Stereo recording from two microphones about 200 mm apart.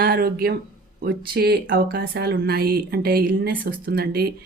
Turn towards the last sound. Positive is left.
turn(degrees=-50)  # may be behind; listen again after turning